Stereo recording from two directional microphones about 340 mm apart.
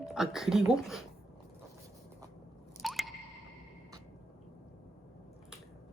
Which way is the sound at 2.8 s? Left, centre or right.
Centre.